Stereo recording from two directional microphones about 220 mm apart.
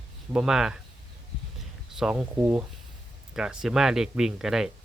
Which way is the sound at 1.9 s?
5° right (ahead or behind).